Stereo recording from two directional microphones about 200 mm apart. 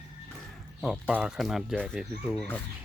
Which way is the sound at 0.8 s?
5° right (ahead or behind).